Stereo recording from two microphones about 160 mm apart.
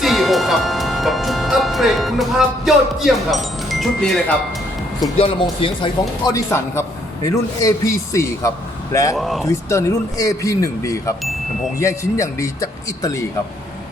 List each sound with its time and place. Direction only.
0.0 s music: centre (ahead or behind)
5.1 s speech: 35° left (ahead or behind)
6.3 s a man's voice: 20° left (ahead or behind)
9.1 s speech: centre (ahead or behind)
9.5 s a man's voice: 20° left (ahead or behind)